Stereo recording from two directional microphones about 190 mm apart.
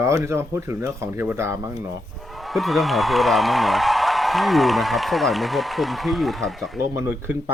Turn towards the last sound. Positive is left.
turn(degrees=-10)  # may be behind; listen again after turning